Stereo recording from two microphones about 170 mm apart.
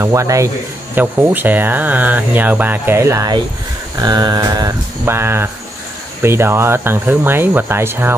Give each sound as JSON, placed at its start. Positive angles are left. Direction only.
{"t": 0.0, "sound": "speech", "side_deg": -15}
{"t": 4.0, "sound": "a sound", "side_deg": -25}
{"t": 6.2, "sound": "speech", "side_deg": -15}